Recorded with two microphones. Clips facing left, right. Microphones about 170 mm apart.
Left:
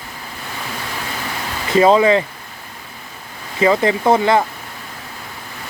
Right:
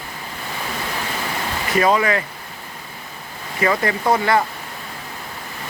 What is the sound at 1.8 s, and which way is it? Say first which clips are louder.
Speech: left 6 dB; 25° left (ahead or behind).